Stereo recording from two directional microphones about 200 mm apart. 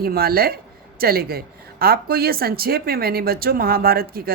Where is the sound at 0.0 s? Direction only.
50° right (ahead or behind).